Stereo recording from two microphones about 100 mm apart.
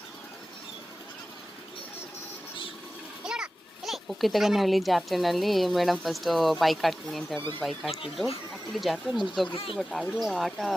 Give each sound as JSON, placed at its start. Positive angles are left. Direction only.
{"t": 3.2, "sound": "a child's voice", "side_deg": -5}
{"t": 9.5, "sound": "speech", "side_deg": 60}
{"t": 9.7, "sound": "speech", "side_deg": 0}